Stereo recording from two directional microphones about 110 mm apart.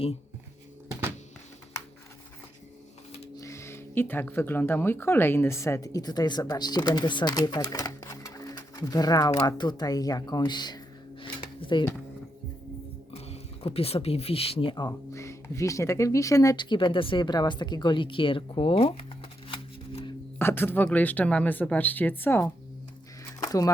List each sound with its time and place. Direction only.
3.3 s speech: 25° left (ahead or behind)
11.2 s a sound: 50° left (ahead or behind)
13.1 s speech: 70° left (ahead or behind); by 14.8 s 50° left (ahead or behind)
14.8 s speech: 25° left (ahead or behind)
16.6 s speech: 45° left (ahead or behind)
19.5 s shuffling cards: 55° left (ahead or behind)
20.4 s speech: 20° left (ahead or behind)
23.4 s a sound: 35° left (ahead or behind)